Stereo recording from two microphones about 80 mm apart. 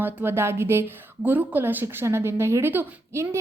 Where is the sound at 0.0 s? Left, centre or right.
Right.